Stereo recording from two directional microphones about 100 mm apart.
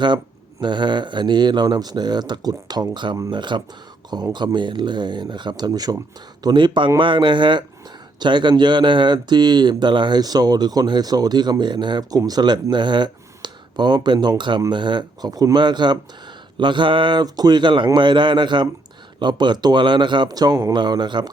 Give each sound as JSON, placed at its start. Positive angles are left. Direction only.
{"t": 0.6, "sound": "speech", "side_deg": -50}